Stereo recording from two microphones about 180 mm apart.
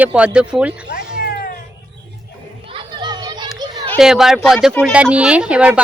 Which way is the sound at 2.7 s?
25° right (ahead or behind).